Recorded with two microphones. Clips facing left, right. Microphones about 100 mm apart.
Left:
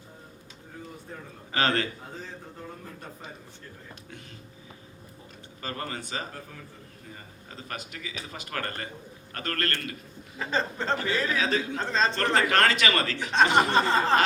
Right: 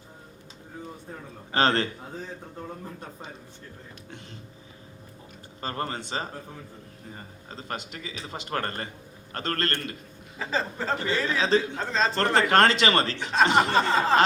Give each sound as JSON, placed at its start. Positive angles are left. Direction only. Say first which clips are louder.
{"t": 1.5, "sound": "a man's voice", "louder": "right 3 dB", "side_deg": -30}
{"t": 5.5, "sound": "a man's voice", "louder": "right 4 dB", "side_deg": -35}
{"t": 10.3, "sound": "speech", "louder": "even", "side_deg": -5}
{"t": 11.3, "sound": "a man's voice", "louder": "right 3 dB", "side_deg": -30}
{"t": 11.8, "sound": "speech", "louder": "even", "side_deg": 0}
{"t": 12.1, "sound": "a man's voice", "louder": "right 7 dB", "side_deg": -30}
{"t": 13.7, "sound": "speech", "louder": "right 1 dB", "side_deg": 0}